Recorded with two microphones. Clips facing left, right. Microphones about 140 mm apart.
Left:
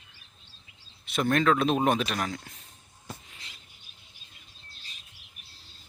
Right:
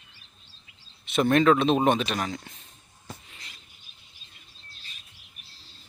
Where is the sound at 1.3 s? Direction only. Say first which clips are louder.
Right 4 dB; 10° right (ahead or behind).